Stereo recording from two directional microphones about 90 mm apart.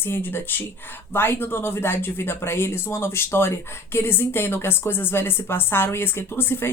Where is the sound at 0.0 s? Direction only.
25° left (ahead or behind).